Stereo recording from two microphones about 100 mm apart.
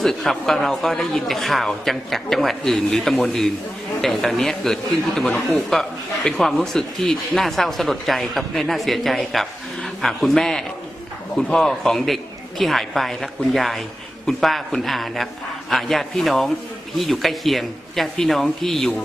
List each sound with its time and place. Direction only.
0.0 s speech: centre (ahead or behind)